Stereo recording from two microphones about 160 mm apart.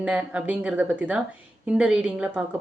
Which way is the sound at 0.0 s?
5° right (ahead or behind).